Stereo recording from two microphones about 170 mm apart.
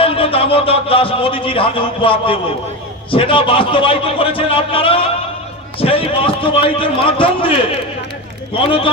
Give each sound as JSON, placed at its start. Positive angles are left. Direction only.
{"t": 0.0, "sound": "a man's voice", "side_deg": 35}